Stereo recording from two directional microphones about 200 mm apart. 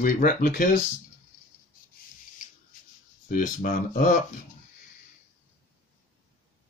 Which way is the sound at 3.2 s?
40° left (ahead or behind).